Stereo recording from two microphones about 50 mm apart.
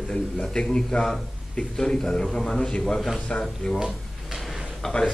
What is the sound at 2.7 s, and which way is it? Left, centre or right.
A man's voice, centre.